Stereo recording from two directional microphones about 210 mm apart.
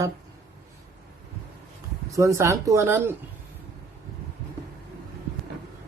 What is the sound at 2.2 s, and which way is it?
A man's voice, 15° right (ahead or behind).